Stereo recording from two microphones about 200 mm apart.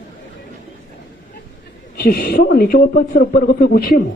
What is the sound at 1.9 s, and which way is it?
Speech, 50° left (ahead or behind).